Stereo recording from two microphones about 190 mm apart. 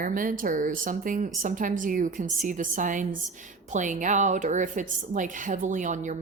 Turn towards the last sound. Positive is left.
turn(degrees=-40)  # may be behind; listen again after turning